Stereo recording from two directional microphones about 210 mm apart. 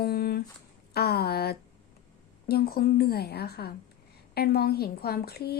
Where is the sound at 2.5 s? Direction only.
45° left (ahead or behind).